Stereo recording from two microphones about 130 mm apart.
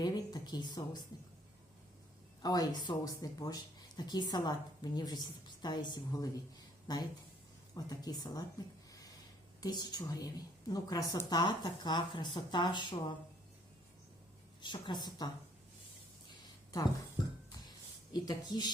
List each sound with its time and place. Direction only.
0.0 s speech: 30° left (ahead or behind)
2.4 s speech: 30° left (ahead or behind)
8.9 s a sound: 25° left (ahead or behind)
9.6 s speech: 30° left (ahead or behind)
14.6 s speech: 35° left (ahead or behind)
18.1 s speech: 35° left (ahead or behind)